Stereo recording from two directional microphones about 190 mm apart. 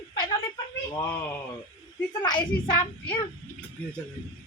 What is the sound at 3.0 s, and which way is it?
Speech, 25° left (ahead or behind).